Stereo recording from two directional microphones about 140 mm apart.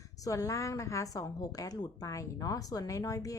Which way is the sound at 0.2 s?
25° left (ahead or behind).